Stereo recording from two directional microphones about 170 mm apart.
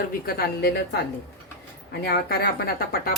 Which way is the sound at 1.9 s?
70° left (ahead or behind).